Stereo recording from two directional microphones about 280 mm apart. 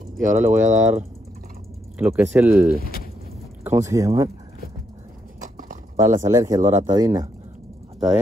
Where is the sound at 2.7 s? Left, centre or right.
Left.